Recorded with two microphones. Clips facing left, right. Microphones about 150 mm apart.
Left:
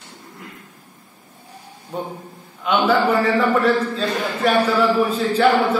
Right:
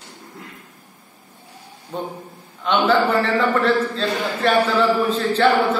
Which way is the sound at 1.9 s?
10° left (ahead or behind).